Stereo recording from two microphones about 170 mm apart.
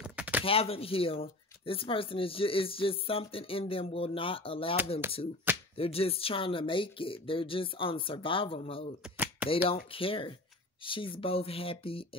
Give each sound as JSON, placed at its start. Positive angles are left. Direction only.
{"t": 0.0, "sound": "a sound", "side_deg": -10}
{"t": 0.4, "sound": "speech", "side_deg": 35}
{"t": 5.5, "sound": "music", "side_deg": -10}
{"t": 5.8, "sound": "speech", "side_deg": 35}
{"t": 9.1, "sound": "a sound", "side_deg": -10}
{"t": 9.9, "sound": "speech", "side_deg": 30}